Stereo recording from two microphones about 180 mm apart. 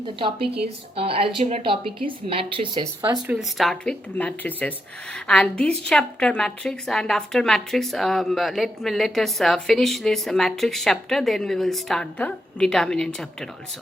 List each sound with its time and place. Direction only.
0.0 s a woman's voice: 25° right (ahead or behind)
3.2 s a woman's voice: centre (ahead or behind)